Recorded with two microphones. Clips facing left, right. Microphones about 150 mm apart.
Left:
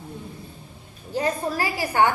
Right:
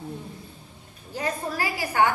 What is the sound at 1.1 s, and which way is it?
Speech, 30° left (ahead or behind).